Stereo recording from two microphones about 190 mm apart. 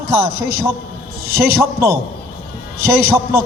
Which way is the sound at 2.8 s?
55° right (ahead or behind).